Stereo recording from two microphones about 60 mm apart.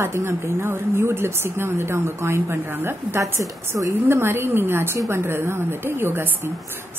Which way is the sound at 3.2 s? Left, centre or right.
Right.